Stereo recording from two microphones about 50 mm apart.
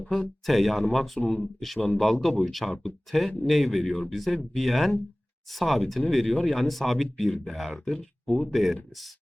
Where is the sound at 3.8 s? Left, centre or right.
Left.